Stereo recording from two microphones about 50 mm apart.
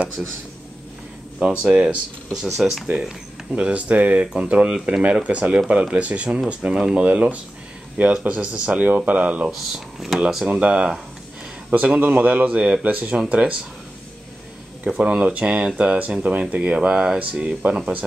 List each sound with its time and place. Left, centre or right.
0.2 s speech: right
1.5 s speech: right
2.3 s speech: centre
3.5 s speech: right
7.1 s speech: right
9.5 s speech: centre
10.3 s speech: centre
12.0 s speech: right
15.0 s speech: right